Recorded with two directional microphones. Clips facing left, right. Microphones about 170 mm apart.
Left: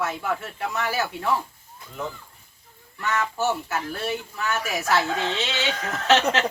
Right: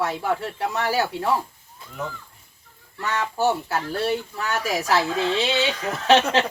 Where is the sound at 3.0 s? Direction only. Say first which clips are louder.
Right 2 dB; 35° right (ahead or behind).